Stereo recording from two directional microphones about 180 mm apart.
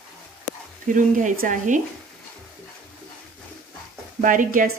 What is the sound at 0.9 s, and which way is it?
Speech, 45° right (ahead or behind).